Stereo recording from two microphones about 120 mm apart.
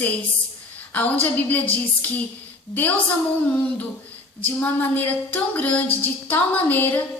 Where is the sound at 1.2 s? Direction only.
15° left (ahead or behind).